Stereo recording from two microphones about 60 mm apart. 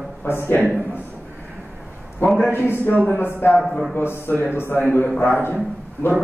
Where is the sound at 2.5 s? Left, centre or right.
Left.